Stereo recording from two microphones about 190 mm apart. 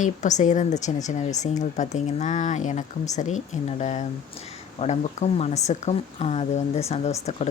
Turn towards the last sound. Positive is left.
turn(degrees=35)  # may be behind; listen again after turning